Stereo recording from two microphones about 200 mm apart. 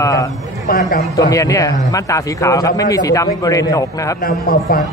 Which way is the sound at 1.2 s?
15° left (ahead or behind).